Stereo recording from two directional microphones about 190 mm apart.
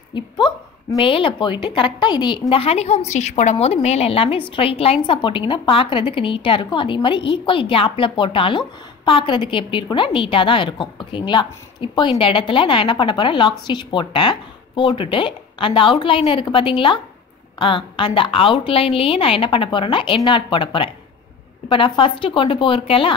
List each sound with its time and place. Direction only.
0.1 s a woman's voice: 25° left (ahead or behind)